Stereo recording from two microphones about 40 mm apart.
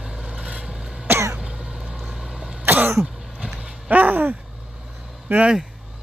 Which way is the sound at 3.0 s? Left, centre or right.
Centre.